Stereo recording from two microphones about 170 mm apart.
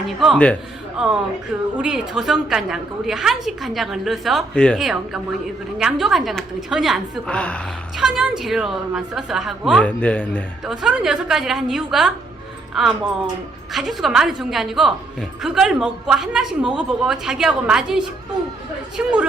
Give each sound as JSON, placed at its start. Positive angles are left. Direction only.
{"t": 0.2, "sound": "a woman's voice", "side_deg": 5}
{"t": 10.7, "sound": "a woman's voice", "side_deg": -5}